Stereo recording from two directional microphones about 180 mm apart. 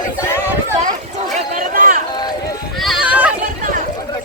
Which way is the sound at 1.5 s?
50° right (ahead or behind).